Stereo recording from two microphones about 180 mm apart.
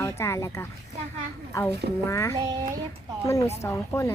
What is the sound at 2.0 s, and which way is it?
Speech, 15° left (ahead or behind).